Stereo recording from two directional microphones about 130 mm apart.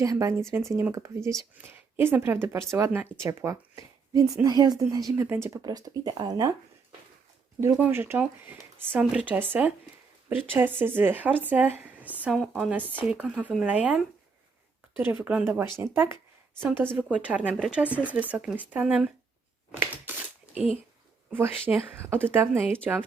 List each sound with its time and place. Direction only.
0.0 s speech: 25° right (ahead or behind)
5.6 s speech: 30° right (ahead or behind)
7.8 s speech: 20° right (ahead or behind)
19.7 s a sound: 15° right (ahead or behind)
21.7 s speech: 15° right (ahead or behind)